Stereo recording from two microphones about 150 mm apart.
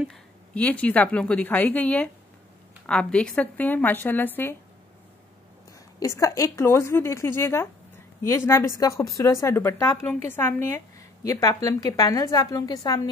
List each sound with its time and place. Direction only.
0.1 s a woman's voice: 10° left (ahead or behind)
5.9 s a woman's voice: 20° left (ahead or behind)